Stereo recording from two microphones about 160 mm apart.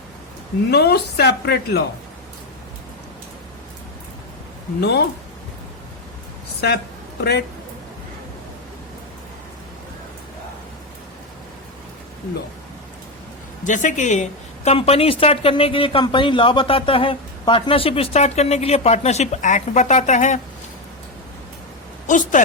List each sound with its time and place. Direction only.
0.7 s speech: 90° left
4.8 s speech: 90° left
6.6 s speech: 90° left
13.7 s a woman's voice: 50° left (ahead or behind)
22.0 s a woman's voice: 55° left (ahead or behind)